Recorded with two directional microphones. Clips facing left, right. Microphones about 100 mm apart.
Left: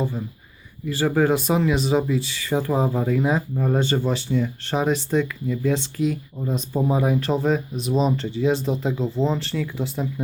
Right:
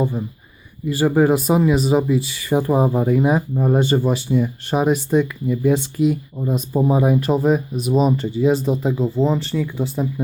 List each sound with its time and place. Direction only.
0.0 s speech: 15° right (ahead or behind)